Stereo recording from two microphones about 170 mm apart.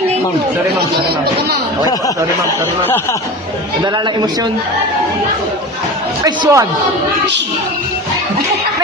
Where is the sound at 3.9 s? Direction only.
25° right (ahead or behind).